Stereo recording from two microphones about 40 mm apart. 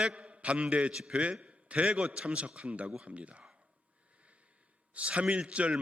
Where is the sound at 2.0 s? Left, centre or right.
Right.